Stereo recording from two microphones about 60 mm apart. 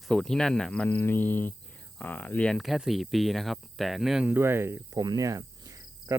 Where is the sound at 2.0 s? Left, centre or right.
Left.